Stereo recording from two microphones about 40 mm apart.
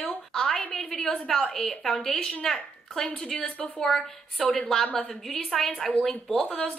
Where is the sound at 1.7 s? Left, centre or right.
Centre.